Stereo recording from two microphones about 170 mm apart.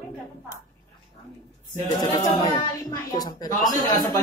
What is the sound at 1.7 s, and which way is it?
Speech, 20° left (ahead or behind).